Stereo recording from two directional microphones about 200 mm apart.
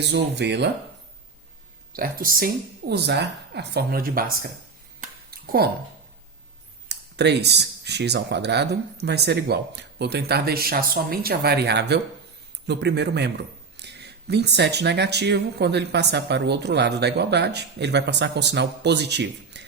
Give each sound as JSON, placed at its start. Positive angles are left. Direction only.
{"t": 0.0, "sound": "speech", "side_deg": -60}
{"t": 1.9, "sound": "speech", "side_deg": -45}
{"t": 2.9, "sound": "speech", "side_deg": -55}
{"t": 4.9, "sound": "a sound", "side_deg": -50}
{"t": 6.8, "sound": "speech", "side_deg": -55}